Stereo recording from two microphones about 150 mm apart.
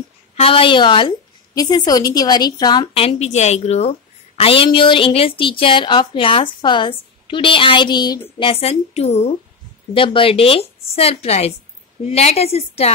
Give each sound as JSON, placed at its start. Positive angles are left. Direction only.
{"t": 0.4, "sound": "speech", "side_deg": 35}
{"t": 8.4, "sound": "a woman's voice", "side_deg": 40}
{"t": 9.9, "sound": "a woman's voice", "side_deg": 35}